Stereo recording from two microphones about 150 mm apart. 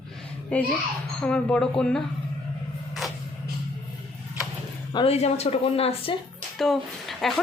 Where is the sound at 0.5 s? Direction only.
5° left (ahead or behind).